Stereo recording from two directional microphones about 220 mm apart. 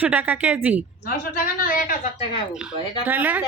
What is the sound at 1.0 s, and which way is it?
Speech, 40° left (ahead or behind).